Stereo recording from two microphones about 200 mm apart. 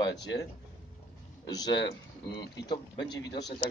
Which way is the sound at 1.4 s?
20° left (ahead or behind).